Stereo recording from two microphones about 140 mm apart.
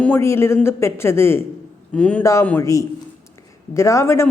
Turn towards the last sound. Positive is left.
turn(degrees=20)  # may be behind; listen again after turning